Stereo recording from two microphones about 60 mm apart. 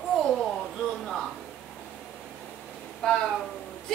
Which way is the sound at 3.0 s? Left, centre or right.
Centre.